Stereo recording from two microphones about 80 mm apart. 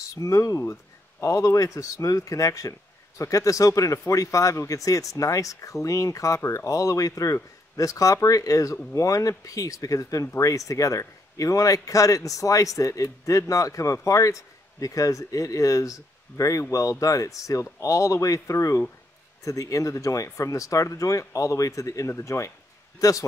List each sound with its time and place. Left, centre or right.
0.0 s speech: left